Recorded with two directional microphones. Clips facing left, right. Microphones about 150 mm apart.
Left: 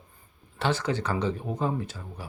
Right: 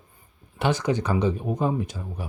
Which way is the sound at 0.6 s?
15° right (ahead or behind).